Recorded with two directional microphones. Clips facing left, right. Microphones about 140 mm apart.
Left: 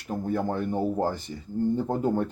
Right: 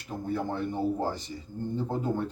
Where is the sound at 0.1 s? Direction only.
45° left (ahead or behind).